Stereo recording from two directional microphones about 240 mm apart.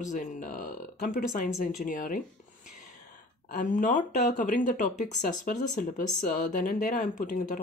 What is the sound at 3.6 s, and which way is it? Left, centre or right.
Speech, left.